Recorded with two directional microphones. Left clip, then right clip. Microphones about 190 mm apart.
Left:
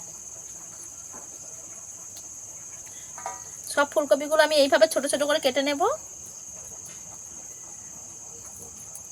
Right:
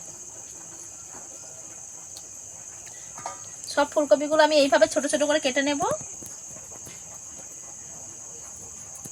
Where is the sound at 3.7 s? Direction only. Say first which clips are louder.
Right 1 dB; 30° left (ahead or behind).